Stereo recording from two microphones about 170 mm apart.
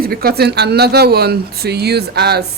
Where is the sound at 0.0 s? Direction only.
60° right (ahead or behind).